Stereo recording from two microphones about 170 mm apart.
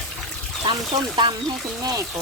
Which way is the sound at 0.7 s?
25° right (ahead or behind).